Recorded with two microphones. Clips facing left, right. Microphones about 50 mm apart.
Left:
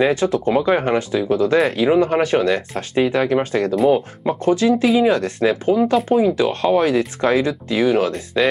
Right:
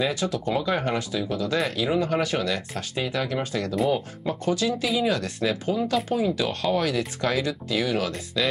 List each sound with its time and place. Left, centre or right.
0.0 s speech: left